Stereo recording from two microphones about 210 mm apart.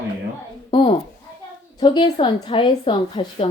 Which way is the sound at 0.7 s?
25° left (ahead or behind).